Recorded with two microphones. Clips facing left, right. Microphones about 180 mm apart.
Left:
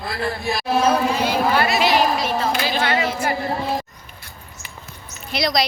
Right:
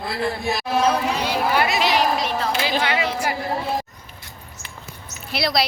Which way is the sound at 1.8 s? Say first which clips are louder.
Left 2 dB; centre (ahead or behind).